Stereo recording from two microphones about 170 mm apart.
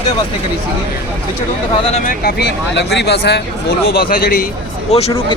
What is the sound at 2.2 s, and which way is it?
Speech, 75° left (ahead or behind).